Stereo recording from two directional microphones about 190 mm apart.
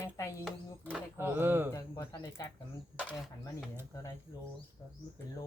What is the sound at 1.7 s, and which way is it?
Speech, 15° left (ahead or behind).